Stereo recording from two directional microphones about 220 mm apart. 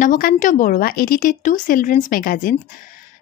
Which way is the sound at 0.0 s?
40° left (ahead or behind).